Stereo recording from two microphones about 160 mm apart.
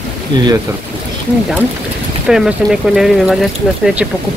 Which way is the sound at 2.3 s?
5° right (ahead or behind).